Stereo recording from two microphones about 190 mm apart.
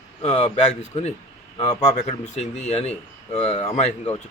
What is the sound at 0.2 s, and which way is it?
Speech, 35° left (ahead or behind).